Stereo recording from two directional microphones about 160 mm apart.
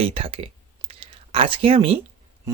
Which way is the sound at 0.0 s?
35° right (ahead or behind).